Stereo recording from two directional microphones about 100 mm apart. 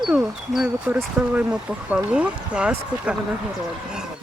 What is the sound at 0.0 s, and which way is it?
Speech, 5° right (ahead or behind).